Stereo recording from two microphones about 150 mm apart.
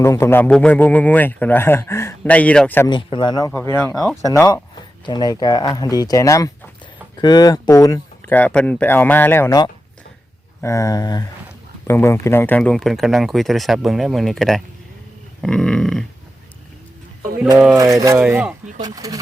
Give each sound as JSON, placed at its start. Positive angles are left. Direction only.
{"t": 0.0, "sound": "a man's voice", "side_deg": 20}
{"t": 2.8, "sound": "speech", "side_deg": 30}
{"t": 8.3, "sound": "a man's voice", "side_deg": 10}
{"t": 10.6, "sound": "speech", "side_deg": 20}
{"t": 17.7, "sound": "speech", "side_deg": -25}
{"t": 18.8, "sound": "speech", "side_deg": -25}